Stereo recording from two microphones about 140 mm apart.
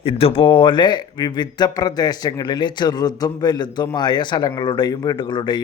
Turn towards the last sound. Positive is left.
turn(degrees=35)  # may be behind; listen again after turning